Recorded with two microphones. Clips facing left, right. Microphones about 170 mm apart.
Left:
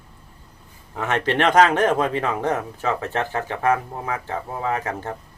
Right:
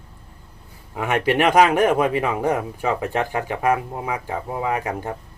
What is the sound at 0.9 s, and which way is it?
Speech, 10° right (ahead or behind).